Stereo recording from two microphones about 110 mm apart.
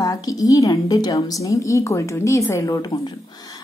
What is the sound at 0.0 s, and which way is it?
A woman's voice, 35° left (ahead or behind).